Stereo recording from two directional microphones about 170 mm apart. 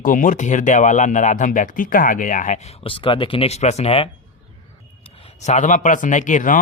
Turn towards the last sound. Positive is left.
turn(degrees=50)  # may be behind; listen again after turning